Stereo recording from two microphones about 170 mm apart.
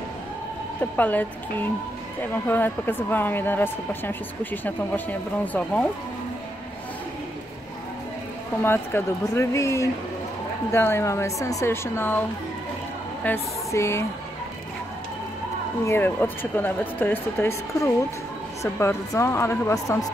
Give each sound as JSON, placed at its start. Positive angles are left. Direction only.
{"t": 0.7, "sound": "speech", "side_deg": 10}
{"t": 8.6, "sound": "speech", "side_deg": 15}
{"t": 13.2, "sound": "speech", "side_deg": 15}
{"t": 15.9, "sound": "speech", "side_deg": 10}